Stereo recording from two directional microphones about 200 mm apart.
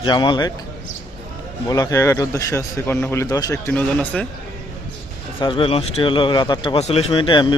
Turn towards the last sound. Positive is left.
turn(degrees=25)  # may be behind; listen again after turning